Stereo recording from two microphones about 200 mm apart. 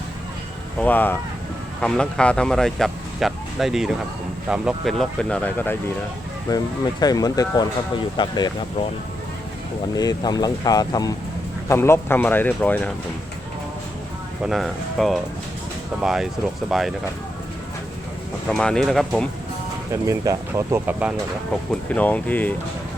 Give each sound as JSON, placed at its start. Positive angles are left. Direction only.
{"t": 0.8, "sound": "speech", "side_deg": 10}
{"t": 6.5, "sound": "speech", "side_deg": 20}
{"t": 9.9, "sound": "speech", "side_deg": 20}
{"t": 14.4, "sound": "speech", "side_deg": 0}
{"t": 18.4, "sound": "speech", "side_deg": 5}
{"t": 20.1, "sound": "speech", "side_deg": -15}
{"t": 21.7, "sound": "speech", "side_deg": 5}